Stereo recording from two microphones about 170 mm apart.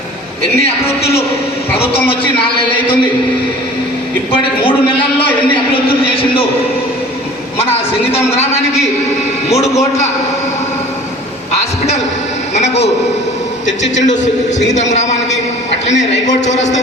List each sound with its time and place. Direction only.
4.3 s a man's voice: 30° left (ahead or behind)
7.6 s a man's voice: 35° left (ahead or behind)
12.5 s a man's voice: 40° left (ahead or behind)
13.9 s a man's voice: 45° left (ahead or behind)